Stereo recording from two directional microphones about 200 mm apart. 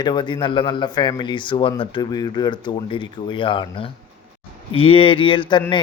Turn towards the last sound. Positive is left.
turn(degrees=25)  # may be behind; listen again after turning